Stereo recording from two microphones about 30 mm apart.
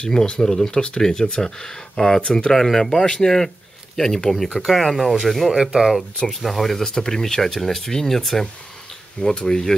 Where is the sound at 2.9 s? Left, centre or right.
Left.